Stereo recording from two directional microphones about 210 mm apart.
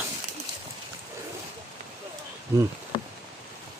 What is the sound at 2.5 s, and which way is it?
Speech, 15° right (ahead or behind).